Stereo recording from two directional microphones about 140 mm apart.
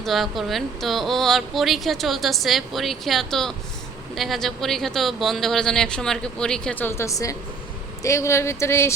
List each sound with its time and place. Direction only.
0.0 s speech: centre (ahead or behind); by 8.9 s 20° left (ahead or behind)